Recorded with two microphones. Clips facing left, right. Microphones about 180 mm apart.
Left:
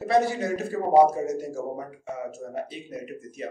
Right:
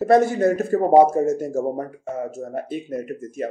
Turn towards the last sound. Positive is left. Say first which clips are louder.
# right 7 dB
turn(degrees=-50)  # may be behind; listen again after turning